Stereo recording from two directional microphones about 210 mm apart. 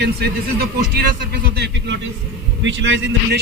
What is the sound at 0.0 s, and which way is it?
A man's voice, 50° right (ahead or behind).